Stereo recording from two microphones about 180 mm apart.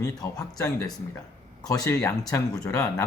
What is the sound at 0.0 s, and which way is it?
Speech, 20° left (ahead or behind).